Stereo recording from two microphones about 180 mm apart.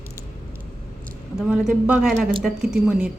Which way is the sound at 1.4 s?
5° right (ahead or behind).